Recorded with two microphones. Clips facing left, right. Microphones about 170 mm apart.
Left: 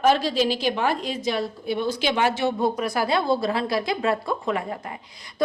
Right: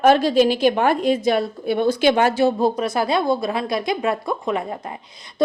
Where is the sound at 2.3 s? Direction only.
35° right (ahead or behind).